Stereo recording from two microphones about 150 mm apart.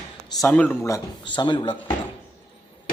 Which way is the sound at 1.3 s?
30° left (ahead or behind).